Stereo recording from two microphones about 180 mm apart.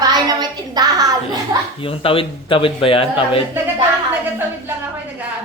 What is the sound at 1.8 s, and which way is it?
A man's voice, 30° left (ahead or behind).